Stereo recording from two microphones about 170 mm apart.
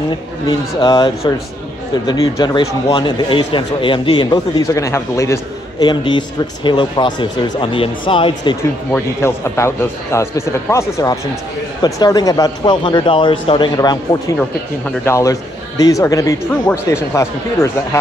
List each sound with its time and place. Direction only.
0.5 s speech: 25° left (ahead or behind)
8.9 s a man's voice: 15° left (ahead or behind)